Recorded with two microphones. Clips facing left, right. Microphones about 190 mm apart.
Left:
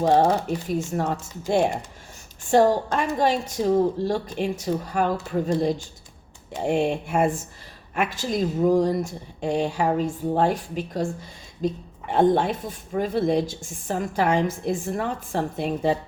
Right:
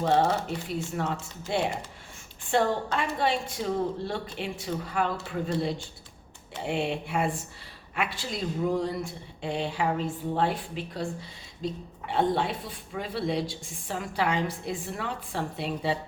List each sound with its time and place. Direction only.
0.0 s speech: 40° left (ahead or behind)